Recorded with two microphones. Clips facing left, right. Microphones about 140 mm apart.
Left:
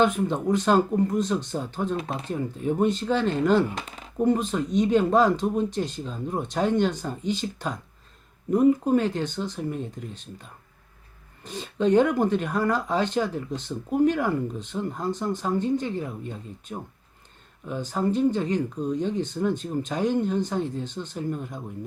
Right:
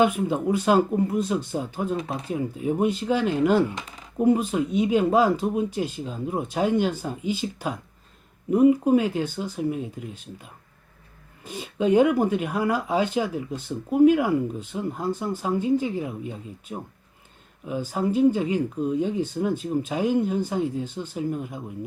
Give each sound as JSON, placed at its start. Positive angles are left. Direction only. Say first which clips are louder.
{"t": 0.0, "sound": "speech", "louder": "right 1 dB", "side_deg": -10}